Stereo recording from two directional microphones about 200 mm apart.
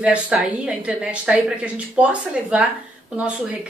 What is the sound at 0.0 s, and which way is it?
A woman's voice, 5° right (ahead or behind).